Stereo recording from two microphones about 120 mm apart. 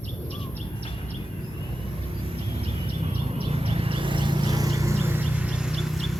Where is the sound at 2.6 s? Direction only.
55° right (ahead or behind); by 6.2 s centre (ahead or behind).